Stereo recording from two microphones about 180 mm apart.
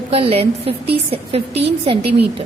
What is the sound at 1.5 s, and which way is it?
Speech, 70° right (ahead or behind).